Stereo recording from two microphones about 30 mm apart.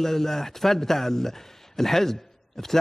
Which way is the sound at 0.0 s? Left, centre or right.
Centre.